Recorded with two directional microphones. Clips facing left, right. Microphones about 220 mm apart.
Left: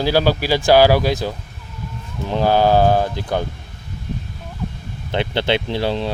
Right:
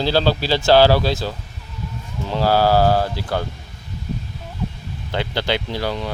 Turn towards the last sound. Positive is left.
turn(degrees=25)  # may be behind; listen again after turning